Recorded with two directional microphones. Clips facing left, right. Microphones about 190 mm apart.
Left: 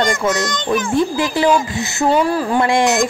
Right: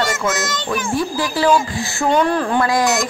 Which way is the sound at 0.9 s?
20° left (ahead or behind).